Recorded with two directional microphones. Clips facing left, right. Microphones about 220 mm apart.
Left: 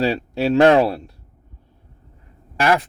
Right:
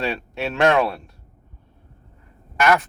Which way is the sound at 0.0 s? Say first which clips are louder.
Left 6 dB; 35° left (ahead or behind).